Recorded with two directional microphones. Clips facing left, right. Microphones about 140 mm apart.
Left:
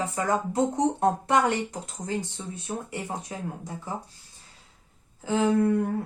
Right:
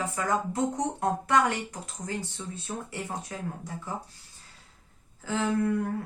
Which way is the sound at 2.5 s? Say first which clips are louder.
Left 3 dB; 15° left (ahead or behind).